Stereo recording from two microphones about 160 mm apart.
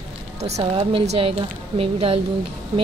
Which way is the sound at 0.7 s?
35° right (ahead or behind).